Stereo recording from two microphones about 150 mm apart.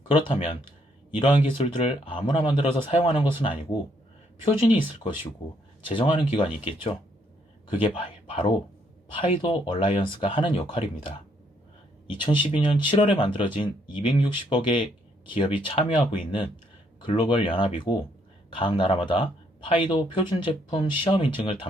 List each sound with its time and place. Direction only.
0.1 s speech: 35° left (ahead or behind)
12.1 s speech: 35° left (ahead or behind)